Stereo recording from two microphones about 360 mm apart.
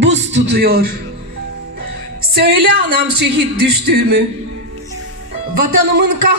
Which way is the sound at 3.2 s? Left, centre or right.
Right.